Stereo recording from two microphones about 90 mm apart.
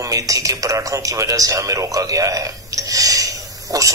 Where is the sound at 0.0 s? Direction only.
40° right (ahead or behind).